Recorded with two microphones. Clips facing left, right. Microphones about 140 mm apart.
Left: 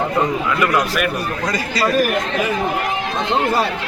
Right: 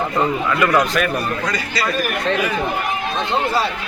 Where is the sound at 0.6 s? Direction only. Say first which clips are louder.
Right 2 dB; 5° left (ahead or behind).